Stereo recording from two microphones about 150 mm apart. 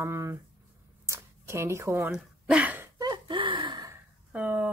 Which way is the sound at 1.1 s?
20° right (ahead or behind).